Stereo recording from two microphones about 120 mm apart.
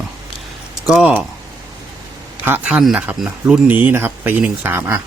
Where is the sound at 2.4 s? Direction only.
10° right (ahead or behind).